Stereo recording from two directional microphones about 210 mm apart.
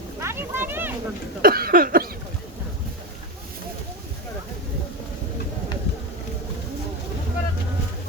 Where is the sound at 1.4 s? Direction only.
45° right (ahead or behind).